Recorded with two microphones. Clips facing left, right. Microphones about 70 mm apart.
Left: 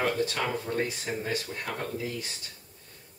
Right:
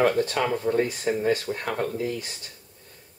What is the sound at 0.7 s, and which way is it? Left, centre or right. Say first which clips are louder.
Speech: right 11 dB; right.